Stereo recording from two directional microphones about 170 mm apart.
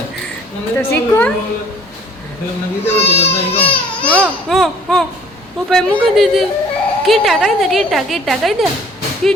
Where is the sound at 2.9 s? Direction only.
35° left (ahead or behind).